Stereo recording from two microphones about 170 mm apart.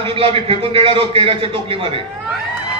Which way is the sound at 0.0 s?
35° right (ahead or behind).